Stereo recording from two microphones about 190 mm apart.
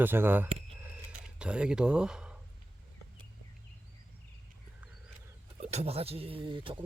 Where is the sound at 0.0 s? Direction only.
10° right (ahead or behind).